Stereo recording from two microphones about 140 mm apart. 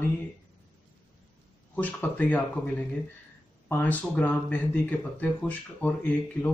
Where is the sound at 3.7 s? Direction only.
10° left (ahead or behind).